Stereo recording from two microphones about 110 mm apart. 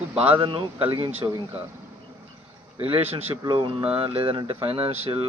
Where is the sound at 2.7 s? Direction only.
55° right (ahead or behind).